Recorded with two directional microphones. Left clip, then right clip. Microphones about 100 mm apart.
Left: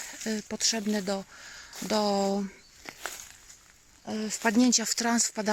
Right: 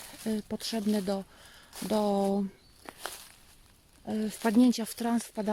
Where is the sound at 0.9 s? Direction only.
40° right (ahead or behind).